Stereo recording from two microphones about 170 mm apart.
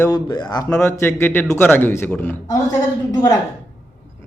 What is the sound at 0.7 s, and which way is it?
Speech, 15° left (ahead or behind).